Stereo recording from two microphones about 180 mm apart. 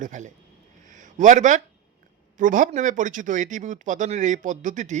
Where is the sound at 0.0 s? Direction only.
45° right (ahead or behind).